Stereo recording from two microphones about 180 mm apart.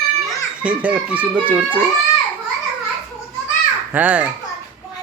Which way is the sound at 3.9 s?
10° right (ahead or behind).